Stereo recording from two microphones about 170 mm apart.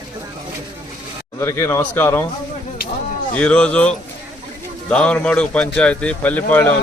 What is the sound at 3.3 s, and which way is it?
Speech, 5° left (ahead or behind).